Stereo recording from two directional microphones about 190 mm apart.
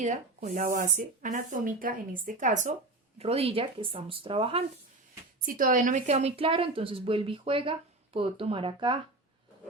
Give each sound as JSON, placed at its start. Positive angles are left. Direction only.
{"t": 0.0, "sound": "speech", "side_deg": -40}
{"t": 3.2, "sound": "a woman's voice", "side_deg": -30}
{"t": 5.5, "sound": "a woman's voice", "side_deg": -45}